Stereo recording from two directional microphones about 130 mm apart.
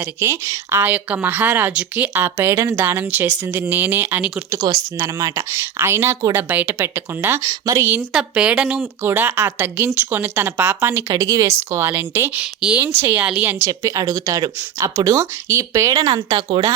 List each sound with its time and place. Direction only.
0.0 s speech: 20° right (ahead or behind)
4.5 s speech: 30° right (ahead or behind)
7.9 s speech: 10° right (ahead or behind)
9.0 s speech: 15° right (ahead or behind)
11.1 s speech: 25° right (ahead or behind)
13.7 s speech: 25° right (ahead or behind)